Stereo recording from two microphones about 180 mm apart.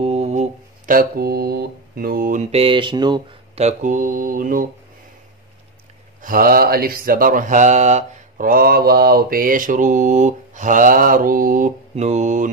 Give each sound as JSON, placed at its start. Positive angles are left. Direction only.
{"t": 0.0, "sound": "a sound", "side_deg": -35}
{"t": 2.5, "sound": "speech", "side_deg": -30}
{"t": 3.5, "sound": "mantra", "side_deg": -40}
{"t": 6.2, "sound": "mantra", "side_deg": -55}
{"t": 11.9, "sound": "mantra", "side_deg": -40}